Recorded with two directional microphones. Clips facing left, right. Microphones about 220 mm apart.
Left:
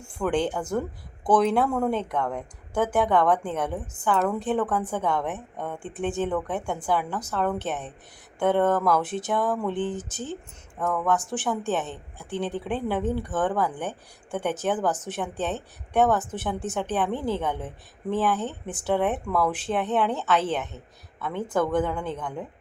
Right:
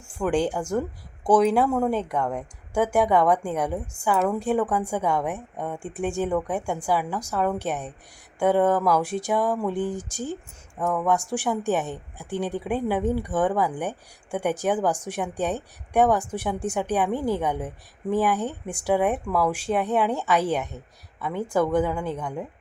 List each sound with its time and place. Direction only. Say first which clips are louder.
0.0 s speech: right 2 dB; 5° right (ahead or behind)